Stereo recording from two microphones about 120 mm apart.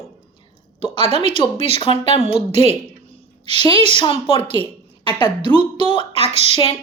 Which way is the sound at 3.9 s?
45° left (ahead or behind).